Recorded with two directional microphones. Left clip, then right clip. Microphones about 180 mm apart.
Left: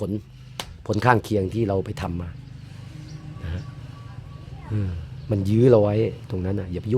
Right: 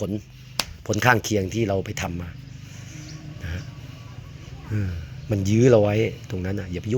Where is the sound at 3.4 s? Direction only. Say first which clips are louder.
Right 2 dB; 15° left (ahead or behind).